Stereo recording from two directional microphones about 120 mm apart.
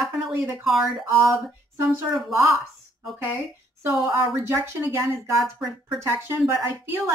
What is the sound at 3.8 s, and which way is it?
Speech, 20° right (ahead or behind).